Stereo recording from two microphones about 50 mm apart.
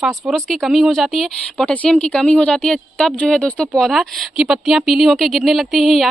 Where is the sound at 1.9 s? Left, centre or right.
Centre.